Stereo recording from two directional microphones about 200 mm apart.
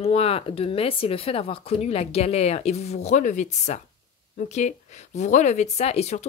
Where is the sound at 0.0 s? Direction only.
30° left (ahead or behind).